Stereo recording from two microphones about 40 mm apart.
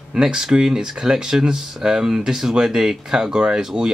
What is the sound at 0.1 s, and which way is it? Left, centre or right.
Speech, centre.